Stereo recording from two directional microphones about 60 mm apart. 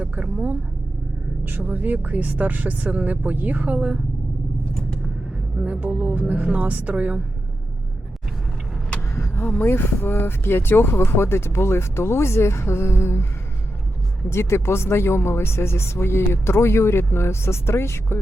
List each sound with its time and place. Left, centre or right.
0.0 s vehicle: right
1.5 s speech: right
5.6 s speech: right
9.3 s speech: left
14.3 s speech: left